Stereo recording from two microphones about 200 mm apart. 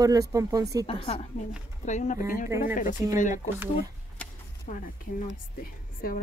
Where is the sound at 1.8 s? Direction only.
35° left (ahead or behind).